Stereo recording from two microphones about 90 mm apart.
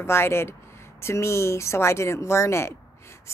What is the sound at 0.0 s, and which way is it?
A woman's voice, 30° left (ahead or behind).